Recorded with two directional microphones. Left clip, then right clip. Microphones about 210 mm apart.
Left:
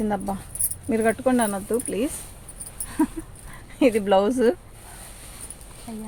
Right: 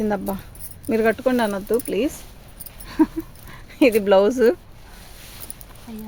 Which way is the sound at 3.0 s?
40° right (ahead or behind).